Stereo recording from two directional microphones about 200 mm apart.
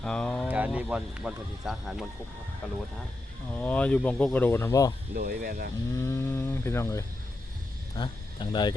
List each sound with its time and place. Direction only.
0.0 s speech: 5° left (ahead or behind)
0.4 s speech: 5° right (ahead or behind)
3.5 s speech: 10° left (ahead or behind)
5.1 s speech: 45° right (ahead or behind)
6.0 s speech: 10° left (ahead or behind)